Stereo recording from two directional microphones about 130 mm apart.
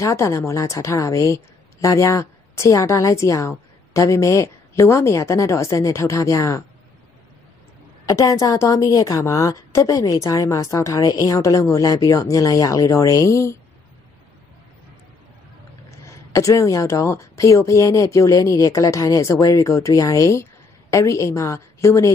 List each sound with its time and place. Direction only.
0.0 s a woman's voice: 20° left (ahead or behind)
8.0 s a woman's voice: 25° left (ahead or behind)
16.1 s a woman's voice: 25° left (ahead or behind)